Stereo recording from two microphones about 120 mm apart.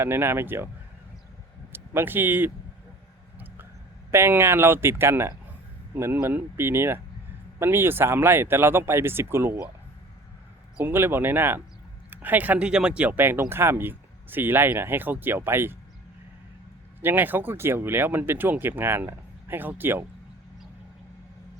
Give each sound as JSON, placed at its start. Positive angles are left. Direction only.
{"t": 0.0, "sound": "speech", "side_deg": -20}
{"t": 1.7, "sound": "speech", "side_deg": -20}
{"t": 3.3, "sound": "a sound", "side_deg": -15}
{"t": 4.1, "sound": "speech", "side_deg": -20}
{"t": 10.8, "sound": "speech", "side_deg": -20}
{"t": 17.0, "sound": "speech", "side_deg": -15}